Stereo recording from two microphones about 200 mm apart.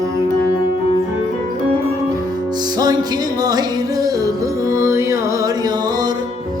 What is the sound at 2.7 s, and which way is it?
Music, 20° right (ahead or behind).